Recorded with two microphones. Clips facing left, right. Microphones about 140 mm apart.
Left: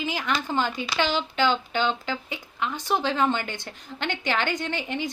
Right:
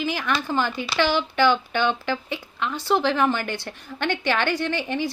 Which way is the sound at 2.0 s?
15° left (ahead or behind).